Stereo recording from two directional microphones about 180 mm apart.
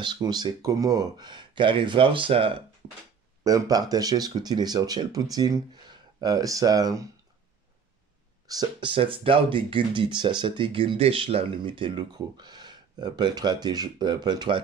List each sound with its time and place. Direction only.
0.0 s speech: 25° right (ahead or behind)
3.4 s speech: 20° right (ahead or behind)
8.5 s speech: 25° right (ahead or behind)